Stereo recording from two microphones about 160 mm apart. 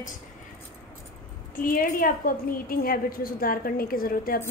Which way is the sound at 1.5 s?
60° left (ahead or behind).